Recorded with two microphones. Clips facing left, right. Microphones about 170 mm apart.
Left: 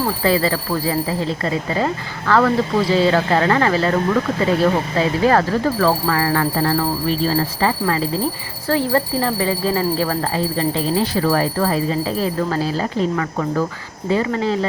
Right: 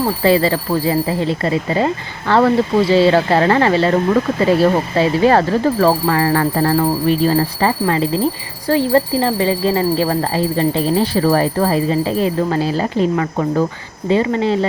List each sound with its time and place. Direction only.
0.2 s speech: 30° right (ahead or behind)
8.6 s speech: 20° right (ahead or behind)